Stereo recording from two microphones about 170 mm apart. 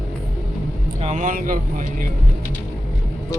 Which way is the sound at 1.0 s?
45° right (ahead or behind).